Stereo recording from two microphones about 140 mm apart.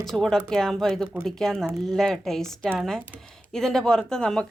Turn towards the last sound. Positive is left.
turn(degrees=5)  # may be behind; listen again after turning